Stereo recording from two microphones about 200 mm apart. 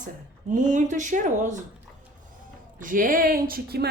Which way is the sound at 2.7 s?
40° right (ahead or behind).